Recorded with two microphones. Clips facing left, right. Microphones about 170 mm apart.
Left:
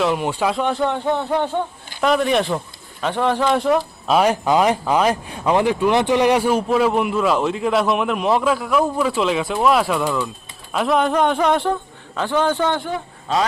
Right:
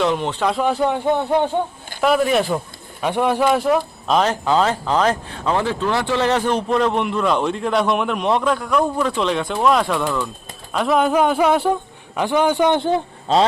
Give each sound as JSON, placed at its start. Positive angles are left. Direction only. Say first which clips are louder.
{"t": 0.0, "sound": "speech", "louder": "even", "side_deg": 0}
{"t": 0.5, "sound": "speech", "louder": "right 1 dB", "side_deg": -5}
{"t": 0.9, "sound": "a man's voice", "louder": "right 2 dB", "side_deg": -15}
{"t": 2.0, "sound": "a man's voice", "louder": "right 1 dB", "side_deg": -5}
{"t": 12.8, "sound": "speech", "louder": "right 7 dB", "side_deg": -30}